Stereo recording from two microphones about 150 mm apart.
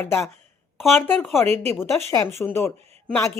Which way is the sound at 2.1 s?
15° left (ahead or behind).